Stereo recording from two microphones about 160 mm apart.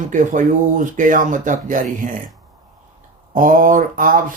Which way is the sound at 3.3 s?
60° right (ahead or behind).